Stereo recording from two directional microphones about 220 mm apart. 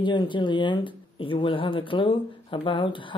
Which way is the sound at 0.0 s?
20° left (ahead or behind).